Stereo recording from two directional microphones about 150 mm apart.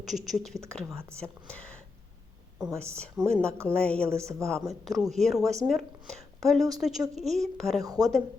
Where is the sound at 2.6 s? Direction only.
15° right (ahead or behind).